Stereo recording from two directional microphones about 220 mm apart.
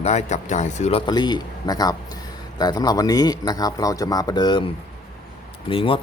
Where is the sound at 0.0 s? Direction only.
30° left (ahead or behind).